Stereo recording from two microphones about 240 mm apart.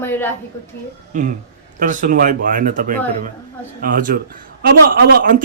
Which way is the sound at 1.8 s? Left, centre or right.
Right.